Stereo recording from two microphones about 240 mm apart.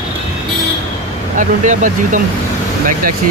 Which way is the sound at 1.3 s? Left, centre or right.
Right.